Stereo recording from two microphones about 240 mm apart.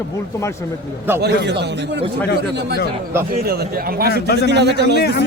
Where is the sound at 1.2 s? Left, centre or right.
Right.